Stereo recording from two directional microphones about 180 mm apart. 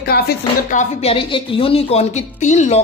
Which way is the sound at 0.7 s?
45° left (ahead or behind).